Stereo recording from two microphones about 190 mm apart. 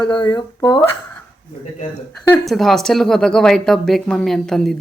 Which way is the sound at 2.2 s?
Centre (ahead or behind).